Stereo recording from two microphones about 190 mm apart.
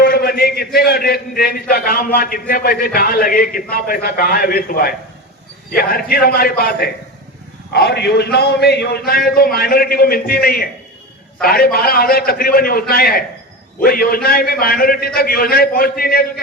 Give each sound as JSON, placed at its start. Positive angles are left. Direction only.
{"t": 0.0, "sound": "a man's voice", "side_deg": 55}